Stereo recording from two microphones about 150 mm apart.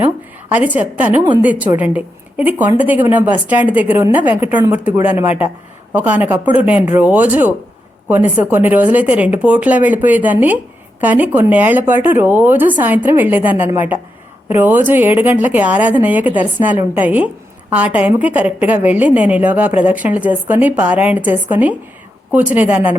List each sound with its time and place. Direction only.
0.5 s a woman's voice: 10° right (ahead or behind)